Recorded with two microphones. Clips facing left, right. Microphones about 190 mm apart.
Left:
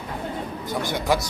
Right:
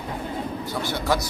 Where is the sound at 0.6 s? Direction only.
15° left (ahead or behind).